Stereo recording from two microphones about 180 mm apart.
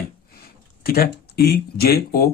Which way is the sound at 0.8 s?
55° left (ahead or behind).